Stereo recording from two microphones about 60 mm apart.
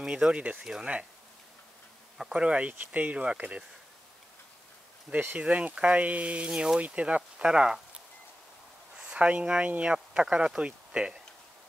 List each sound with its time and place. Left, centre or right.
0.0 s speech: centre
2.1 s speech: centre
5.1 s speech: right
8.9 s speech: centre